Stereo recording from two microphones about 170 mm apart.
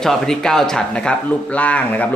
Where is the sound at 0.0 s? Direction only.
5° left (ahead or behind).